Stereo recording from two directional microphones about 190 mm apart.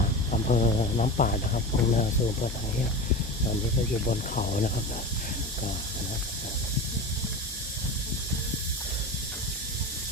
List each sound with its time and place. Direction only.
0.0 s speech: 40° left (ahead or behind)
4.0 s speech: 45° left (ahead or behind)